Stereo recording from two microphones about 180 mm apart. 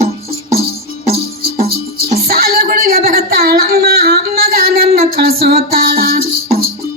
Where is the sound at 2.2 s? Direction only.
60° right (ahead or behind).